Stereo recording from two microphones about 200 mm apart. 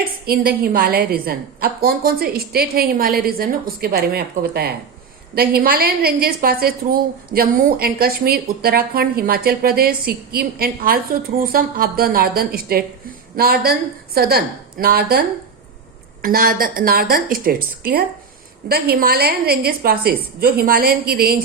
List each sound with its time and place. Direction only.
0.0 s a woman's voice: 50° right (ahead or behind)
16.2 s a woman's voice: 45° right (ahead or behind)